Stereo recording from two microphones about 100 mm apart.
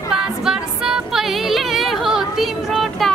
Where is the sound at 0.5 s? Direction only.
5° right (ahead or behind).